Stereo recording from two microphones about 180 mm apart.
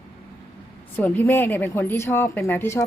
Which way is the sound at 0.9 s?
10° left (ahead or behind).